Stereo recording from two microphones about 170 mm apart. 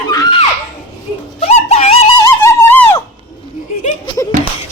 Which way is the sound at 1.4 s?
40° left (ahead or behind).